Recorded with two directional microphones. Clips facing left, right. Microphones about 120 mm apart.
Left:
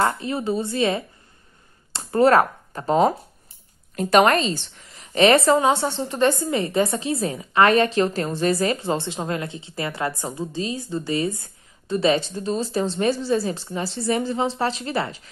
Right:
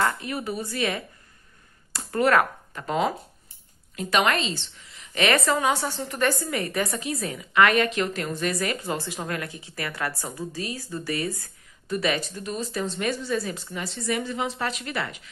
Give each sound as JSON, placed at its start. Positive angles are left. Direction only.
{"t": 0.0, "sound": "a woman's voice", "side_deg": 30}